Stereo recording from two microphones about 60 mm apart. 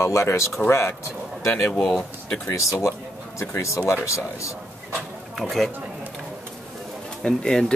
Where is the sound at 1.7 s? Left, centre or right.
Centre.